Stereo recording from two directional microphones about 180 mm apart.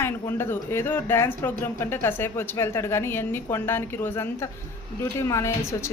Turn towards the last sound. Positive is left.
turn(degrees=15)  # may be behind; listen again after turning